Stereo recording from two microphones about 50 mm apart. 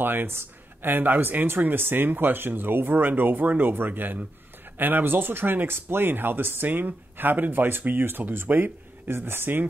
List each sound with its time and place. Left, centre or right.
0.0 s speech: right